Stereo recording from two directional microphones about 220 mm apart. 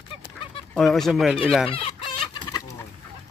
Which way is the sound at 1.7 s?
25° left (ahead or behind).